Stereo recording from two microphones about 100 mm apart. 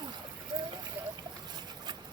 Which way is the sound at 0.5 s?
50° right (ahead or behind).